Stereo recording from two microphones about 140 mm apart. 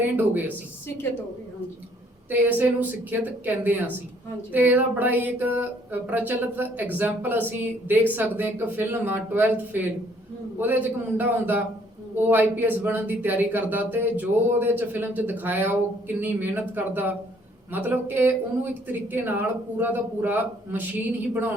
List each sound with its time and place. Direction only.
0.0 s speech: 15° right (ahead or behind)
2.3 s speech: 15° right (ahead or behind)